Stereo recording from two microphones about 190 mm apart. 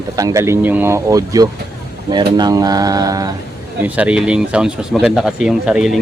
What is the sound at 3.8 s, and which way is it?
Speech, 5° right (ahead or behind).